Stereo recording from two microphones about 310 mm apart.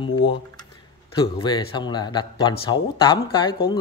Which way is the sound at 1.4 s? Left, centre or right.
Centre.